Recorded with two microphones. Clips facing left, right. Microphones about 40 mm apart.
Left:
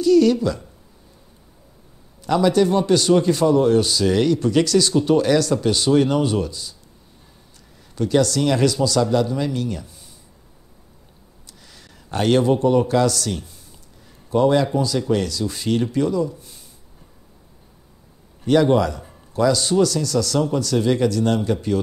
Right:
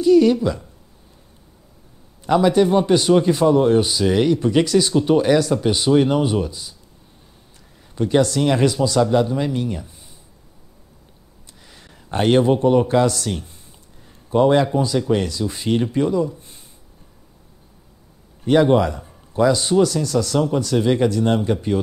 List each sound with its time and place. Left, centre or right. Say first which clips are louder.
0.0 s speech: right 1 dB; right
2.2 s a man's voice: right 2 dB; centre
7.9 s speech: right 1 dB; right
11.7 s speech: right 2 dB; right
18.4 s speech: right 1 dB; centre